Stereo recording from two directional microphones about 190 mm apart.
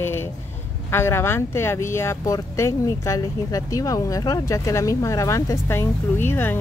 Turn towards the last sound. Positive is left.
turn(degrees=10)  # may be behind; listen again after turning